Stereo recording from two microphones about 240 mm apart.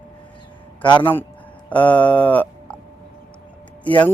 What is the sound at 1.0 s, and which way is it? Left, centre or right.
Speech, centre.